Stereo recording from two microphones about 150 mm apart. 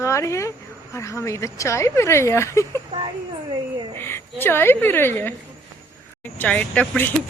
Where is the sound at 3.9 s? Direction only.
15° left (ahead or behind).